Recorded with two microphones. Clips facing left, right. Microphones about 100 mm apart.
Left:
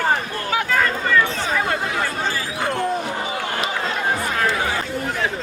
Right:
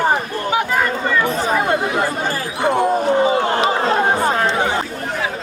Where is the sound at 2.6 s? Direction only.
15° right (ahead or behind).